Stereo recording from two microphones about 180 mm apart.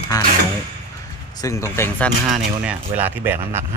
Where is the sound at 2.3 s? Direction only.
10° right (ahead or behind).